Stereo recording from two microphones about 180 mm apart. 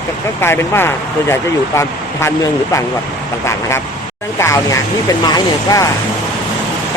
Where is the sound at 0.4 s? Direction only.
15° left (ahead or behind).